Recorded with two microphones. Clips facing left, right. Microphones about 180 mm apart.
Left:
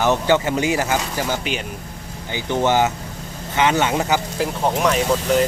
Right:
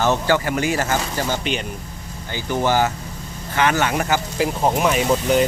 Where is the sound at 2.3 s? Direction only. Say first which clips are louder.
Left 1 dB; 20° left (ahead or behind).